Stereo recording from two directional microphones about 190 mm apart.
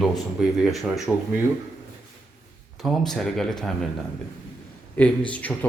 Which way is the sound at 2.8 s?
Centre (ahead or behind).